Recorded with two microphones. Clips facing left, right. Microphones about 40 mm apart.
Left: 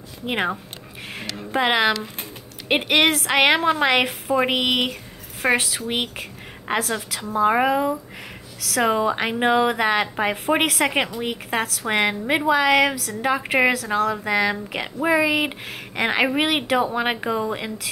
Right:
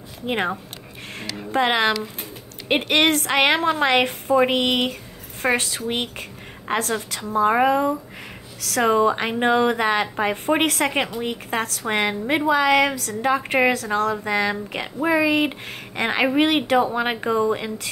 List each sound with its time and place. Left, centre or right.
1.5 s a woman's voice: centre